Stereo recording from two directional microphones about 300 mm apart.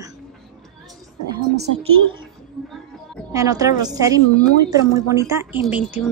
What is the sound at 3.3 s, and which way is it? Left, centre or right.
A woman's voice, centre.